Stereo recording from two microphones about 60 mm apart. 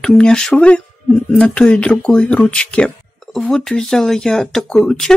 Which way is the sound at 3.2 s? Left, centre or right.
Centre.